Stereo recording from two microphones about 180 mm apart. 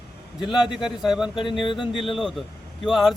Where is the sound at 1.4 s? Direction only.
25° left (ahead or behind).